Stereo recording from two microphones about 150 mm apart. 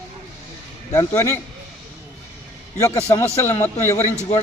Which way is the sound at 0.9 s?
20° left (ahead or behind).